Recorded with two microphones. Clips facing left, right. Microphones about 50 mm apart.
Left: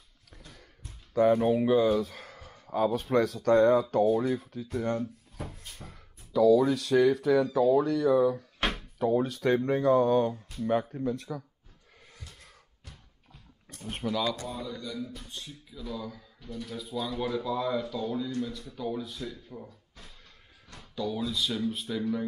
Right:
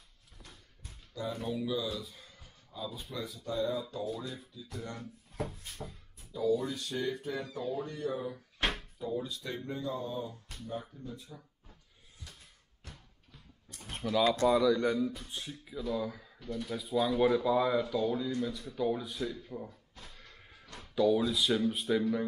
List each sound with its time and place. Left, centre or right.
1.1 s speech: left
4.7 s speech: left
5.8 s speech: centre
6.3 s speech: left
9.0 s speech: left
14.0 s speech: centre
14.5 s speech: right
15.3 s speech: centre
20.9 s speech: centre